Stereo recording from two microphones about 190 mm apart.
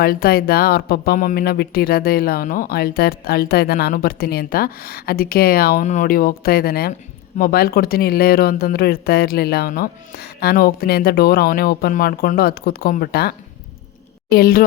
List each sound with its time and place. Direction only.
0.0 s speech: 55° left (ahead or behind)
5.8 s speech: 40° left (ahead or behind)